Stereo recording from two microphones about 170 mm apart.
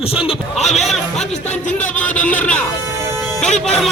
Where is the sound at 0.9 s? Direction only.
5° left (ahead or behind).